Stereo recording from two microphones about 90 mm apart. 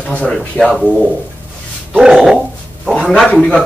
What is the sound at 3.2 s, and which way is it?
Speech, 10° left (ahead or behind).